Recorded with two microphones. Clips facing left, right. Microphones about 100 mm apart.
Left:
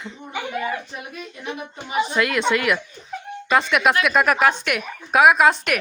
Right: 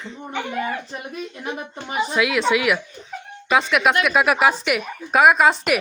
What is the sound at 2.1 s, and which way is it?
Speech, centre (ahead or behind).